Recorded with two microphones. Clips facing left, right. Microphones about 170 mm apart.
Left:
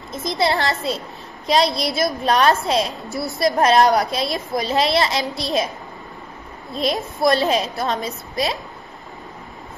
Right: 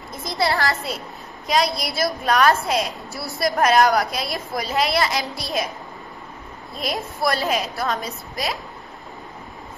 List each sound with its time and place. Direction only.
0.1 s a woman's voice: 20° left (ahead or behind)
6.7 s a woman's voice: 25° left (ahead or behind)